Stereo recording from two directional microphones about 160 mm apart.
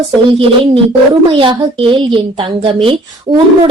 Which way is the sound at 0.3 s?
35° right (ahead or behind).